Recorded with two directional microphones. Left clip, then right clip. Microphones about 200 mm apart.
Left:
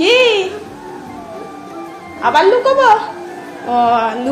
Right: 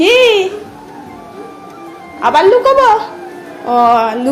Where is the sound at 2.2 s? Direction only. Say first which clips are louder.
Right 2 dB; 30° right (ahead or behind).